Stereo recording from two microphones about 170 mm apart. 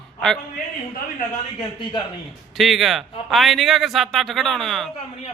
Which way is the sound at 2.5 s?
Centre (ahead or behind).